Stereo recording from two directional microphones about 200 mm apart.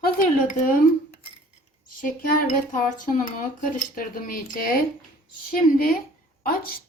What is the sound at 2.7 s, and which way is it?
Speech, 40° left (ahead or behind).